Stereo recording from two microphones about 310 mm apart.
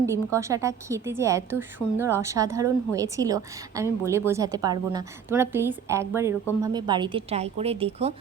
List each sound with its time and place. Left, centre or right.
0.0 s a woman's voice: centre